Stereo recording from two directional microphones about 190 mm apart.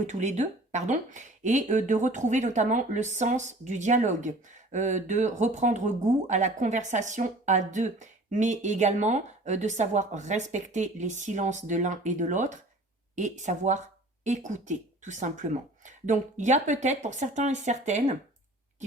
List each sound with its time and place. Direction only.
0.1 s speech: 40° right (ahead or behind)